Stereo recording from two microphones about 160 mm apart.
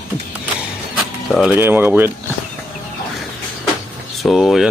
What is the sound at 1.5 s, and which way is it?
Speech, 15° right (ahead or behind).